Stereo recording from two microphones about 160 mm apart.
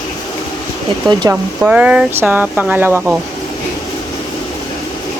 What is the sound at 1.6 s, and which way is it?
Speech, 5° right (ahead or behind).